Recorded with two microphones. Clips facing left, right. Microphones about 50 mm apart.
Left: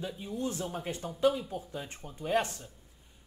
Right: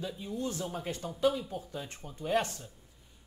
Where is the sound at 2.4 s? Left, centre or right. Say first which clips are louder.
Left 1 dB; left.